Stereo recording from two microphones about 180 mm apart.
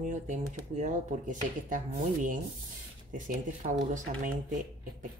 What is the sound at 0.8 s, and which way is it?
Speech, 45° right (ahead or behind).